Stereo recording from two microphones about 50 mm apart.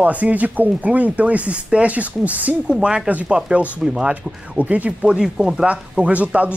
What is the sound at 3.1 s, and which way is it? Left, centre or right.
Speech, right.